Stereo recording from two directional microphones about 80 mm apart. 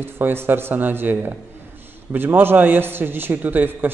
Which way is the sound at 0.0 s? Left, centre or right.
Right.